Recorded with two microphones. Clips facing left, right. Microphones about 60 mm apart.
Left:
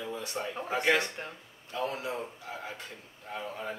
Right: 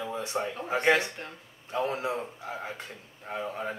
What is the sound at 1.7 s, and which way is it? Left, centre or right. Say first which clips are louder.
Speech: right 4 dB; right.